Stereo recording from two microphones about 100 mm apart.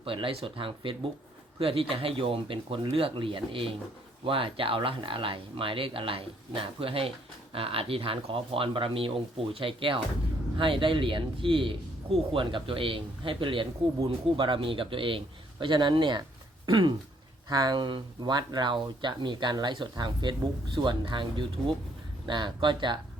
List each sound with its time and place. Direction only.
0.0 s speech: 65° right (ahead or behind)